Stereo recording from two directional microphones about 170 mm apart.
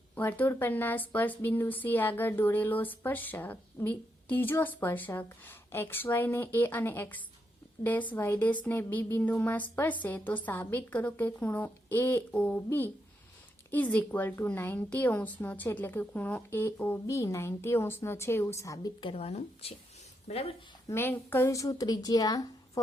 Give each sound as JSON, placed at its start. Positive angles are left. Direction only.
{"t": 0.2, "sound": "speech", "side_deg": 10}
{"t": 19.1, "sound": "speech", "side_deg": 40}
{"t": 20.8, "sound": "a woman's voice", "side_deg": 15}